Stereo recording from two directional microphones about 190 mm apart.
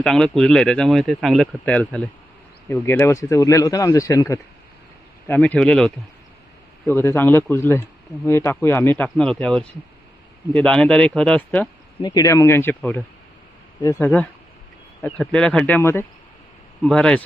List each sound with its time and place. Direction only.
0.0 s speech: 5° left (ahead or behind)
12.0 s speech: 20° left (ahead or behind)